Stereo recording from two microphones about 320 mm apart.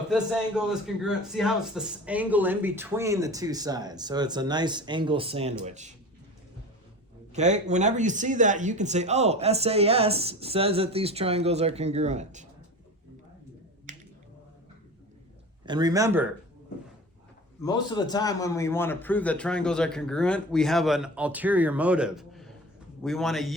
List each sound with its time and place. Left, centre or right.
0.1 s a man's voice: centre; by 5.9 s right
7.3 s speech: right
13.9 s finger snapping: right
15.6 s a man's voice: centre
17.6 s a man's voice: centre